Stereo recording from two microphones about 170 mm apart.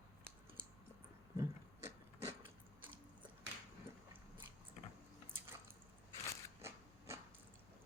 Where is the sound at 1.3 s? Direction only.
15° right (ahead or behind).